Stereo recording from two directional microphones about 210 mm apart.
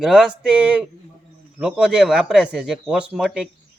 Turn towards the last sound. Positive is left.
turn(degrees=-5)  # may be behind; listen again after turning